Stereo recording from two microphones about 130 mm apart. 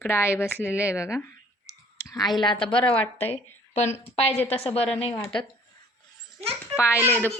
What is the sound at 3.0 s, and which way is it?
Speech, 10° left (ahead or behind).